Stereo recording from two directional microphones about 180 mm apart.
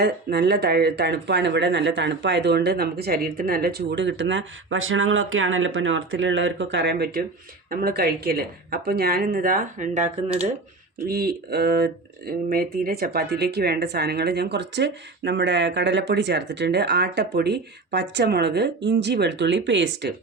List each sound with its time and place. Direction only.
0.0 s speech: 65° right (ahead or behind)
7.7 s speech: 55° right (ahead or behind)
11.0 s speech: 55° right (ahead or behind); by 20.1 s 75° right (ahead or behind)